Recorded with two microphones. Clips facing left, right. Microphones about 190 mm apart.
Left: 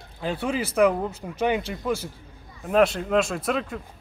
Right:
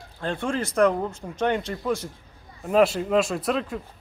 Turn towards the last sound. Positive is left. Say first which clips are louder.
# right 1 dB
turn(degrees=0)  # may be behind; listen again after turning